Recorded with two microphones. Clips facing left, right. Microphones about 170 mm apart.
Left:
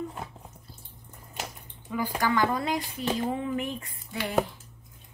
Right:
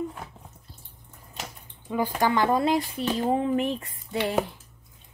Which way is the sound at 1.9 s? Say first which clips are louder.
Right 3 dB; 25° right (ahead or behind).